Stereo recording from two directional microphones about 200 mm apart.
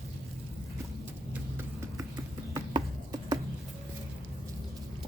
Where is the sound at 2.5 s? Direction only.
20° right (ahead or behind).